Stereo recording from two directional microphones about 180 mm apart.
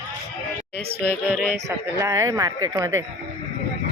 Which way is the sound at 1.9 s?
20° right (ahead or behind).